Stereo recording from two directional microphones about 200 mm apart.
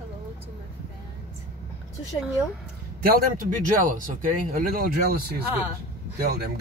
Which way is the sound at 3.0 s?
45° right (ahead or behind).